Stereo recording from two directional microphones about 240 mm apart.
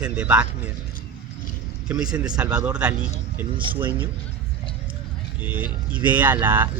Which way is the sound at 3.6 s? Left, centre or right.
Right.